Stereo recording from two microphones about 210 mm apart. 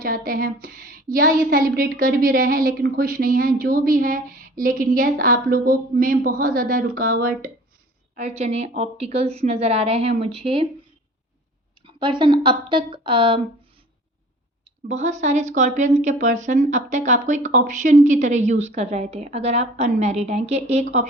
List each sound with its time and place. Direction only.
0.0 s a woman's voice: 45° right (ahead or behind)
8.1 s a woman's voice: 35° right (ahead or behind)
11.9 s a woman's voice: 20° right (ahead or behind)
14.8 s a woman's voice: 35° right (ahead or behind)